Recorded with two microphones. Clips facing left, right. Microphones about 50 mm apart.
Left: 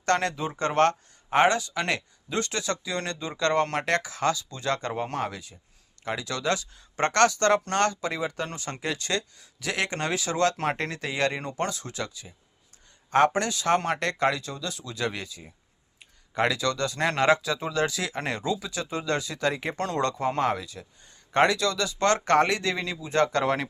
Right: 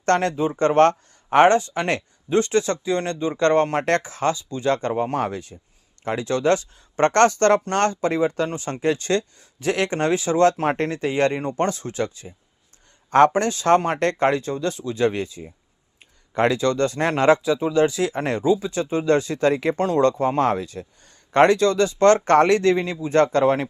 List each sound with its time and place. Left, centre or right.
0.0 s speech: right
0.3 s speech: right
0.6 s speech: right
5.2 s speech: right
17.4 s speech: centre
20.4 s speech: right